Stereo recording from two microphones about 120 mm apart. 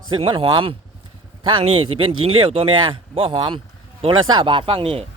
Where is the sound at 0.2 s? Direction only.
45° right (ahead or behind).